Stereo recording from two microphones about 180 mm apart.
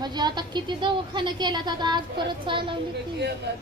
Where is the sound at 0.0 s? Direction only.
25° right (ahead or behind).